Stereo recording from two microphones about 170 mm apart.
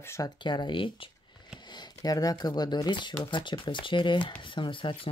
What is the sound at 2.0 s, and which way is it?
Speech, 20° left (ahead or behind).